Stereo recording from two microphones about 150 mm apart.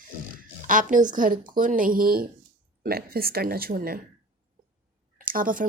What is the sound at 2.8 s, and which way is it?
Speech, 90° right.